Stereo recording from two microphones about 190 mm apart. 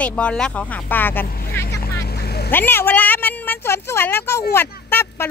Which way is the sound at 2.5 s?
10° left (ahead or behind).